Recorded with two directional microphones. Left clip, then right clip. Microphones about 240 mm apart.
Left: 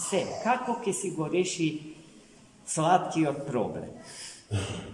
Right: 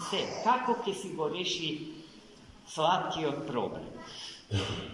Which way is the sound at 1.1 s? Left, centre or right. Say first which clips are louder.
Left 4 dB; left.